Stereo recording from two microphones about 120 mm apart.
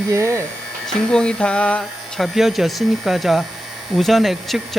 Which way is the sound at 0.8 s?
5° left (ahead or behind).